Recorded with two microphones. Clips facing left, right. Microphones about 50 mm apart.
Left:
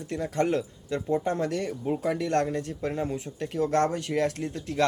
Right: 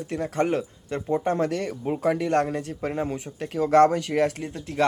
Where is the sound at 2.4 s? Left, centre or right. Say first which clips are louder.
Right 2 dB; right.